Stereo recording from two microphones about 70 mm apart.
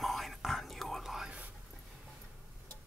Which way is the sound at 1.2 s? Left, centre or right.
Centre.